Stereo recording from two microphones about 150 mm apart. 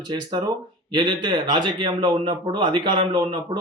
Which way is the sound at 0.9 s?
30° right (ahead or behind).